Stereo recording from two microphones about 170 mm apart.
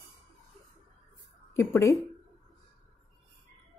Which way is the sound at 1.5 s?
15° left (ahead or behind).